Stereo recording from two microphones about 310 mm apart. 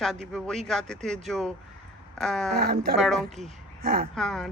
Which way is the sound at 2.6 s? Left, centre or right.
Right.